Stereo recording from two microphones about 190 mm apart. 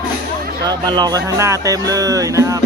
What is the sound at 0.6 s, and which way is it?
Speech, 20° right (ahead or behind).